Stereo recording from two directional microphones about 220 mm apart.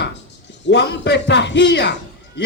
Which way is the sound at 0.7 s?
50° left (ahead or behind).